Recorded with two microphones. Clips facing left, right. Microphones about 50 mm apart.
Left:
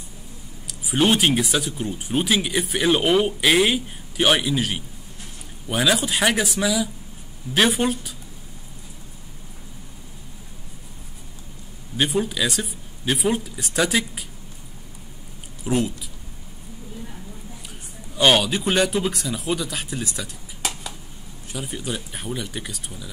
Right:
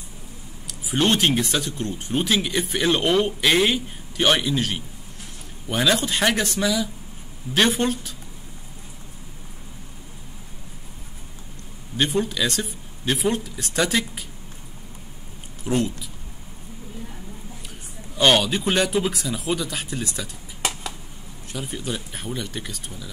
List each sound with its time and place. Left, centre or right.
0.7 s speech: centre
12.0 s speech: centre
15.6 s speech: centre
18.1 s speech: centre